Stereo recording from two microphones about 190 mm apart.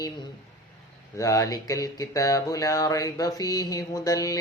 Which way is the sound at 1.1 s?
15° left (ahead or behind).